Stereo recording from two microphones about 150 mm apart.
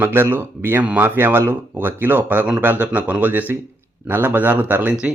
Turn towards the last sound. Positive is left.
turn(degrees=-10)  # may be behind; listen again after turning